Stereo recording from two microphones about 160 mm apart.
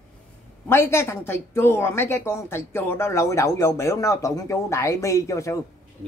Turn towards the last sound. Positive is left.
turn(degrees=20)  # may be behind; listen again after turning